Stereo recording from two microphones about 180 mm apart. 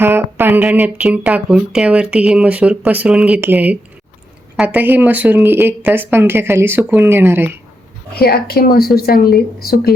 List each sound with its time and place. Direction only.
0.0 s speech: 10° right (ahead or behind)
8.1 s speech: 60° left (ahead or behind)